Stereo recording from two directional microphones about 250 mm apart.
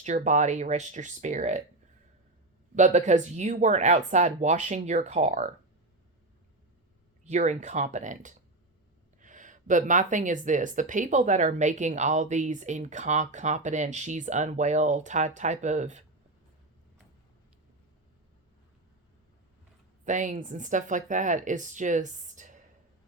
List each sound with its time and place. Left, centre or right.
0.0 s speech: right
2.7 s speech: right
7.3 s speech: right
20.1 s speech: right